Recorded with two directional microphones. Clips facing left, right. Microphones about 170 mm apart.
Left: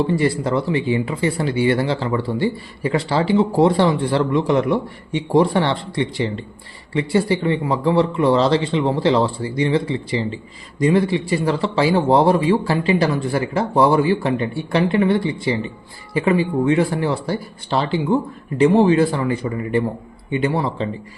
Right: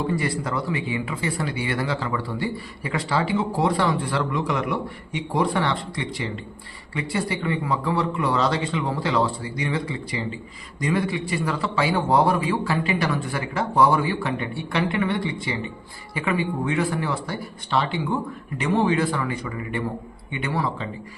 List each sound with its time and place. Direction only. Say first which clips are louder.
0.1 s a man's voice: left 7 dB; 30° left (ahead or behind)